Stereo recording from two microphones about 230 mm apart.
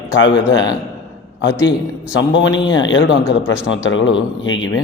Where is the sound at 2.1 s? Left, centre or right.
Left.